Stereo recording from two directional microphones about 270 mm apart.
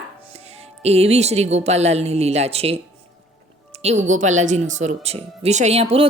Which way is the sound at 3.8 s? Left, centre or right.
Right.